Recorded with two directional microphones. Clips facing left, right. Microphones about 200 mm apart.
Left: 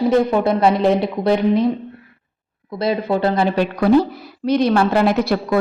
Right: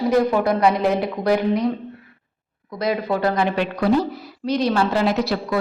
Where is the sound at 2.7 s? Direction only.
30° left (ahead or behind).